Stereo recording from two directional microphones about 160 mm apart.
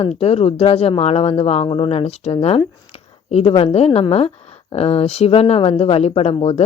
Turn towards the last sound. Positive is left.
turn(degrees=40)  # may be behind; listen again after turning